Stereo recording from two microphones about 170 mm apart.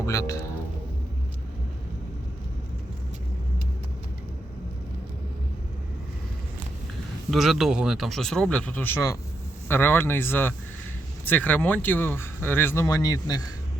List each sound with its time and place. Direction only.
0.0 s speech: 20° left (ahead or behind)
7.3 s speech: centre (ahead or behind); by 13.4 s 20° left (ahead or behind)